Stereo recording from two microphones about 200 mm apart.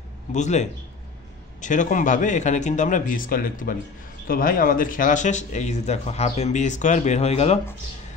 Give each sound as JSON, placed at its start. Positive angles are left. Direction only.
{"t": 0.3, "sound": "speech", "side_deg": 35}